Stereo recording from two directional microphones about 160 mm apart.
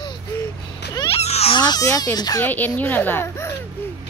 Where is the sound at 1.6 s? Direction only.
25° left (ahead or behind).